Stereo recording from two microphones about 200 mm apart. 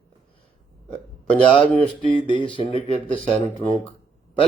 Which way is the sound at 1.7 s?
5° left (ahead or behind).